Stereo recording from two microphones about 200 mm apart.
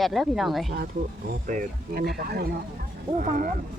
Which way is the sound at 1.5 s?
45° right (ahead or behind).